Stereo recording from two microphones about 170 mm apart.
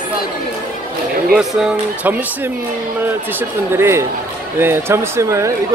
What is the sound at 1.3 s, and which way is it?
Speech, 5° right (ahead or behind).